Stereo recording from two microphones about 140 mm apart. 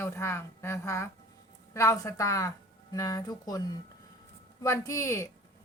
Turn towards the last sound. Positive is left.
turn(degrees=20)  # may be behind; listen again after turning